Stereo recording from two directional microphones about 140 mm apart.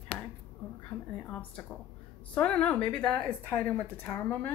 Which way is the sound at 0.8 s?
10° left (ahead or behind).